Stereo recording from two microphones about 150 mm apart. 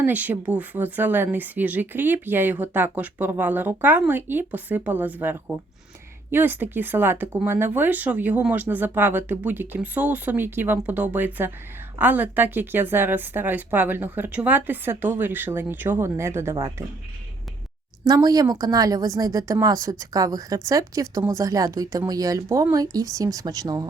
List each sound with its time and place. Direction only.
0.0 s speech: 10° right (ahead or behind)
18.1 s a woman's voice: 25° right (ahead or behind)